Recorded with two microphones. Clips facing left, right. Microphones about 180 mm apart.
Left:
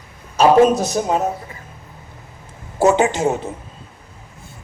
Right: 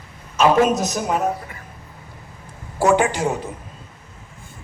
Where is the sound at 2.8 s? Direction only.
25° left (ahead or behind).